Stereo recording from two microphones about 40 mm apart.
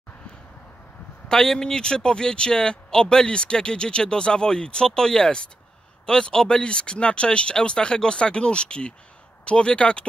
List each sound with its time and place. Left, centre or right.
1.3 s speech: centre